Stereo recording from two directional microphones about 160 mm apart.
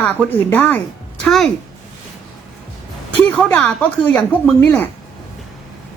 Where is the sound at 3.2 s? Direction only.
10° left (ahead or behind).